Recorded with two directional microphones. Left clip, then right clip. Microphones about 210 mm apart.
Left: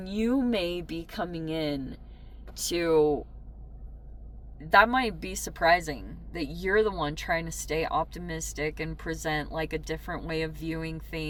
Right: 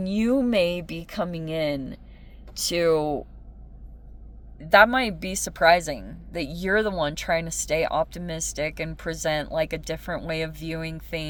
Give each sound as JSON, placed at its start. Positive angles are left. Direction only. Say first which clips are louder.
{"t": 0.0, "sound": "a woman's voice", "louder": "right 5 dB", "side_deg": -50}
{"t": 4.7, "sound": "a woman's voice", "louder": "right 4 dB", "side_deg": -55}